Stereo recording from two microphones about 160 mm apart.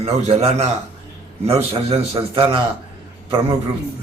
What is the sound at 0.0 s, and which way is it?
Speech, 45° right (ahead or behind).